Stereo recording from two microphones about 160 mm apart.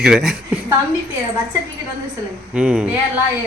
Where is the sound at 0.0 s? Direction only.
Centre (ahead or behind).